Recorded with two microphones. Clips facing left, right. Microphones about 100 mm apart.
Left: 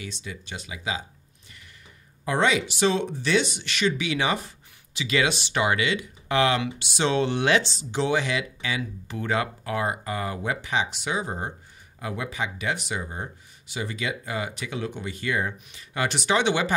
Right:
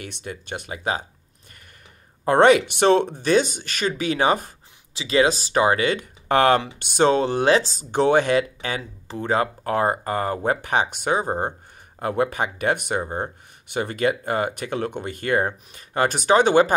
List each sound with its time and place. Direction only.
0.0 s speech: 55° right (ahead or behind)
2.2 s speech: 55° right (ahead or behind)
9.0 s speech: 30° right (ahead or behind)